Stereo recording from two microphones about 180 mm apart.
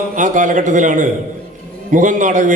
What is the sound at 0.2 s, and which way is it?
A man's voice, 45° right (ahead or behind).